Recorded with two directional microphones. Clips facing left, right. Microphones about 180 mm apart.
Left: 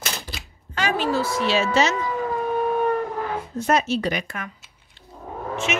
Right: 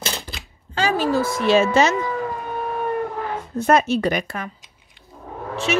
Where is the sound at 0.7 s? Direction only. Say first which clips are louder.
Right 3 dB; 30° right (ahead or behind).